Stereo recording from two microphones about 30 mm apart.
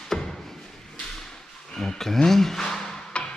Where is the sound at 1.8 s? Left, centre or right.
Centre.